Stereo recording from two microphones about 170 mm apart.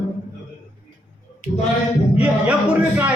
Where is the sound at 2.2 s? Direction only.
5° right (ahead or behind).